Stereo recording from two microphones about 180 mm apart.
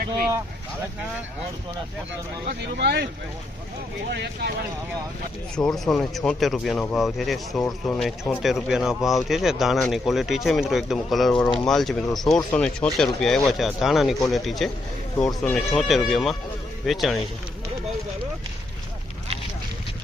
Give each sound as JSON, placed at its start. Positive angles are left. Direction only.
{"t": 2.5, "sound": "speech", "side_deg": -65}
{"t": 4.1, "sound": "speech", "side_deg": -65}
{"t": 5.5, "sound": "speech", "side_deg": 5}